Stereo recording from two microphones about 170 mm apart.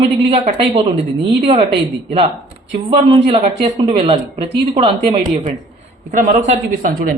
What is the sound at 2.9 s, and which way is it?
Speech, 30° right (ahead or behind).